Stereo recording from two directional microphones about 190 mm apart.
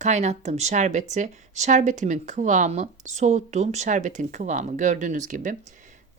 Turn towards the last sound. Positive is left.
turn(degrees=-40)  # may be behind; listen again after turning